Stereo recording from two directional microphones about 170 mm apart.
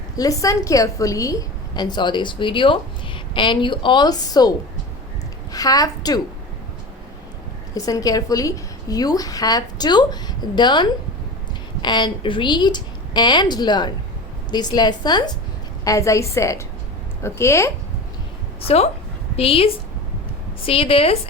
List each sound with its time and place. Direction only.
0.2 s a woman's voice: 20° left (ahead or behind)
7.7 s a woman's voice: 20° left (ahead or behind)
19.4 s a woman's voice: 35° left (ahead or behind)